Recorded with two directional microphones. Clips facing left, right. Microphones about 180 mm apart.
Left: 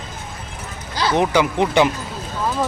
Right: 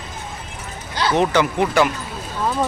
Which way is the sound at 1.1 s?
15° left (ahead or behind).